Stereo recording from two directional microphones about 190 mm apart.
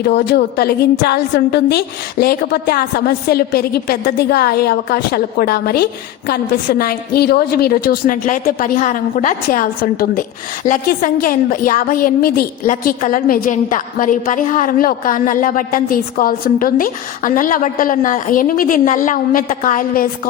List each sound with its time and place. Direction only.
0.0 s a woman's voice: 60° left (ahead or behind)